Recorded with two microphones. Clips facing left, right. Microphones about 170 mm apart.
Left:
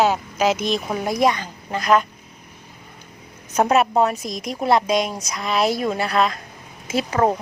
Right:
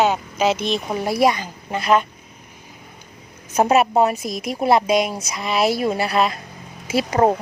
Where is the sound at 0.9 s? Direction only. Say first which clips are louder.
Right 2 dB; 10° right (ahead or behind).